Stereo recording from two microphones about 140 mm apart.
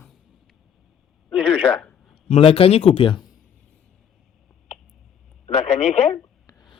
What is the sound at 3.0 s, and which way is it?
Speech, 35° left (ahead or behind).